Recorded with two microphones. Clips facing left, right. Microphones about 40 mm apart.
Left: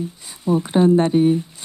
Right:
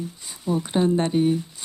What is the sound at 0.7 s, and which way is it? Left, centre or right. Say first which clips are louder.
Speech: left 6 dB; centre.